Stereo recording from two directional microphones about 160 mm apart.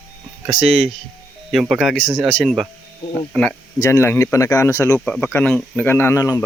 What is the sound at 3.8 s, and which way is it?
Speech, 15° left (ahead or behind).